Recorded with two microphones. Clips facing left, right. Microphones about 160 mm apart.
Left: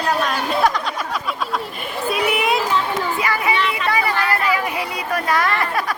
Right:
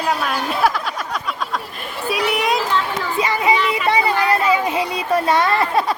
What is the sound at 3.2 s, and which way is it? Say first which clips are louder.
Speech: right 6 dB; 25° right (ahead or behind).